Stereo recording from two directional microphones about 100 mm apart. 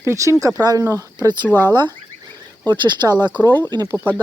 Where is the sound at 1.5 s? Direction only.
20° left (ahead or behind).